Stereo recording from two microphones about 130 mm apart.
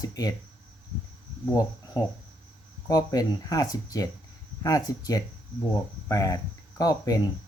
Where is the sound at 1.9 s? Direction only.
30° left (ahead or behind).